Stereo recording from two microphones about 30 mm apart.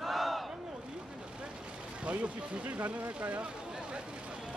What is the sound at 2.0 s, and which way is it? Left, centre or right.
Speech, right.